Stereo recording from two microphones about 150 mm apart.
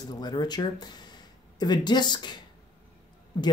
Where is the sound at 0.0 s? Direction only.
30° left (ahead or behind).